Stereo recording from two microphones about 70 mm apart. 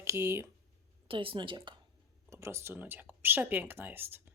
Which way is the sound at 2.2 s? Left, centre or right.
Right.